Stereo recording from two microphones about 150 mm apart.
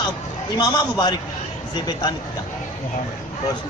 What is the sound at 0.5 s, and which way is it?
Speech, 25° left (ahead or behind).